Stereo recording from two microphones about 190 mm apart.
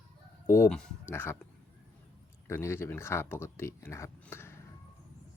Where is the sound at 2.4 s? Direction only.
15° left (ahead or behind).